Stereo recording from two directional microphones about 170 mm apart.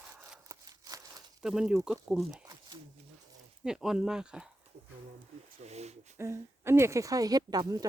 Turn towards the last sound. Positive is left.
turn(degrees=-25)  # may be behind; listen again after turning